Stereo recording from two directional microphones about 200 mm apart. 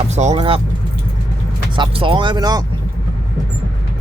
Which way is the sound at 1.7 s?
25° right (ahead or behind).